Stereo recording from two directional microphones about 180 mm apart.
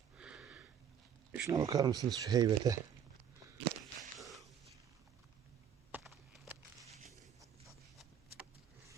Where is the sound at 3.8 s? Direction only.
Centre (ahead or behind).